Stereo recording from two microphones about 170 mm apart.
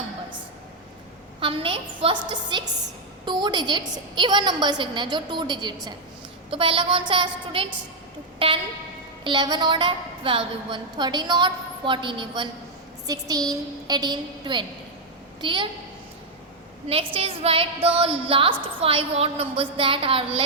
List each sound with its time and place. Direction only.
1.4 s a sound: 30° right (ahead or behind)
2.0 s a woman's voice: 30° right (ahead or behind)
16.9 s a woman's voice: 35° right (ahead or behind)